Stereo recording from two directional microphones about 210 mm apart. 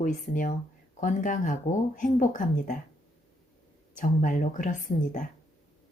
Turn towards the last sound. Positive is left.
turn(degrees=40)  # may be behind; listen again after turning